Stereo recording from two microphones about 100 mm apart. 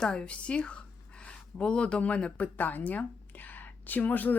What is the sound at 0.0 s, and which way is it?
A woman's voice, 10° left (ahead or behind).